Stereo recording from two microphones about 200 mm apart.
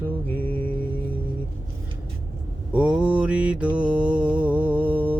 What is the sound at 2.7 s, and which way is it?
Mantra, 5° right (ahead or behind).